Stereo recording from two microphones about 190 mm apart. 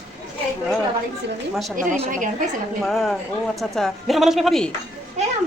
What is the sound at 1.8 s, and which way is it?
Speech, 35° right (ahead or behind).